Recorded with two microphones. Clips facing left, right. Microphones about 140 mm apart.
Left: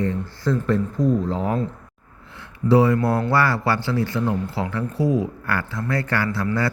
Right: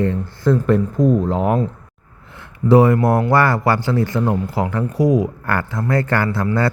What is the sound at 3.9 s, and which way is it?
Speech, 45° right (ahead or behind).